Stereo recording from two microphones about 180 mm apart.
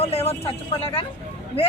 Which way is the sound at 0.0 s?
35° left (ahead or behind).